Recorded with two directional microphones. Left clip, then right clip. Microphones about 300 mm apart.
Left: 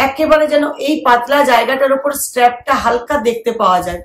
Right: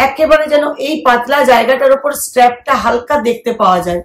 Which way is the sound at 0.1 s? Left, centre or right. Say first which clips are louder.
Right 2 dB; centre.